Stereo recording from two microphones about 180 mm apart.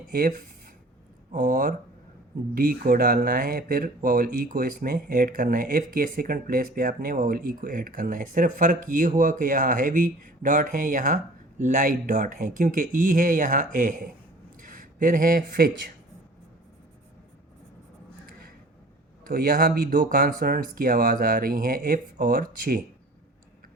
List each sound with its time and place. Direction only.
0.1 s speech: 50° right (ahead or behind)
19.2 s speech: 55° right (ahead or behind)